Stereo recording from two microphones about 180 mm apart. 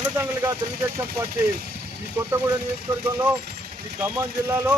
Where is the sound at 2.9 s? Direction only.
20° right (ahead or behind).